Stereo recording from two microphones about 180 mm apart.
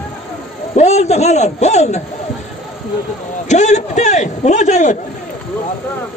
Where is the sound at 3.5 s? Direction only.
40° left (ahead or behind).